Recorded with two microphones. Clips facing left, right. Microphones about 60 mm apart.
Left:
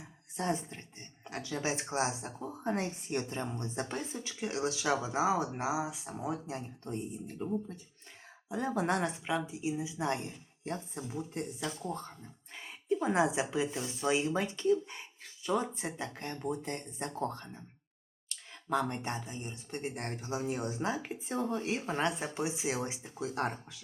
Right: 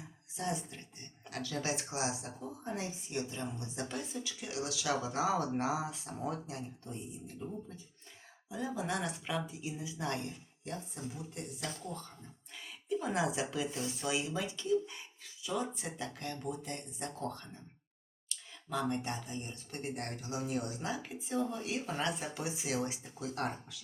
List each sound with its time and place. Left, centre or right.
0.3 s a woman's voice: left
2.7 s a woman's voice: left; by 6.3 s centre
6.8 s speech: left
8.4 s speech: left
9.0 s speech: left
10.7 s a woman's voice: left
12.5 s a sound: left
13.1 s a woman's voice: left
16.0 s a woman's voice: left
18.3 s a sound: left
18.9 s speech: left
19.4 s speech: centre